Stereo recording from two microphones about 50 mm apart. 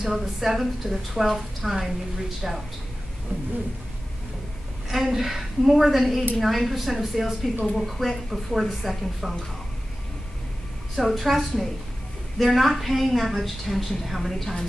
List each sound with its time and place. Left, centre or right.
0.0 s a woman's voice: centre
3.3 s bird: right
4.8 s a woman's voice: centre
11.0 s a woman's voice: centre